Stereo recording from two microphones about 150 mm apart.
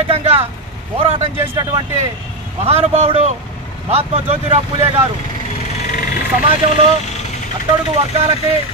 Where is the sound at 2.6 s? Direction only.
45° right (ahead or behind).